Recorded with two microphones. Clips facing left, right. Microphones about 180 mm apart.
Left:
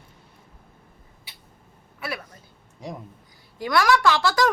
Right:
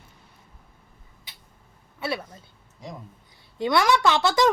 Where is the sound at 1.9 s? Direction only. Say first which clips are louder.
Right 4 dB; 25° right (ahead or behind).